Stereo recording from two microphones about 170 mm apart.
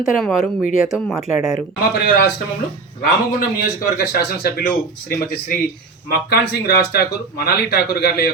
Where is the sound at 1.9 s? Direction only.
80° left.